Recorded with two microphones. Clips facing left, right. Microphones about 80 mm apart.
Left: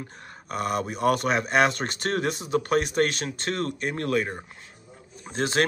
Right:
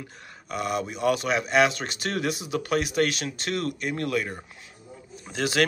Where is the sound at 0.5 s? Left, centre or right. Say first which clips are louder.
Left 1 dB; left.